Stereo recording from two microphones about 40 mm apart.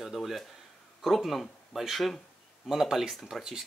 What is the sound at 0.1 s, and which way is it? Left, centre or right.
Speech, centre.